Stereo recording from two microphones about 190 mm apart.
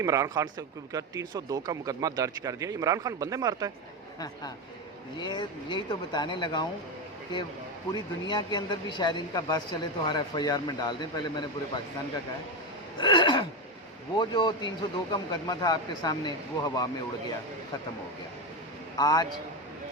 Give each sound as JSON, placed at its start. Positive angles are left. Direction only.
{"t": 0.0, "sound": "a man's voice", "side_deg": -15}
{"t": 5.2, "sound": "a man's voice", "side_deg": 25}
{"t": 7.9, "sound": "a man's voice", "side_deg": 25}
{"t": 13.0, "sound": "a man's voice", "side_deg": 25}
{"t": 18.9, "sound": "a man's voice", "side_deg": 20}